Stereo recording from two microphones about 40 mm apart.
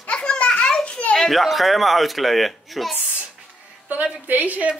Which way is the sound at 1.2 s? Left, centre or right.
Centre.